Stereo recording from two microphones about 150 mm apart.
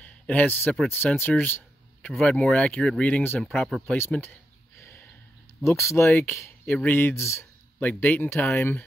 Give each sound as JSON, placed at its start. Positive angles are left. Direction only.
{"t": 0.0, "sound": "a man's voice", "side_deg": 10}
{"t": 3.9, "sound": "speech", "side_deg": 15}
{"t": 4.7, "sound": "a sound", "side_deg": 15}
{"t": 5.6, "sound": "speech", "side_deg": 20}